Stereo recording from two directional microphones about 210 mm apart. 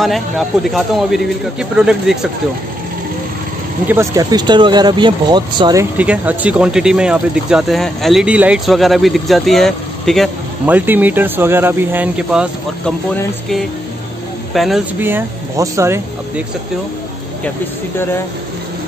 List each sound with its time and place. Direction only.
0.0 s speech: centre (ahead or behind)
3.8 s speech: 10° right (ahead or behind)
5.9 s speech: 5° right (ahead or behind)
14.5 s speech: centre (ahead or behind)